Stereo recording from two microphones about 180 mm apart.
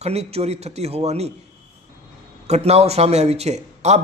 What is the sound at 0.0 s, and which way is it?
A man's voice, 35° right (ahead or behind).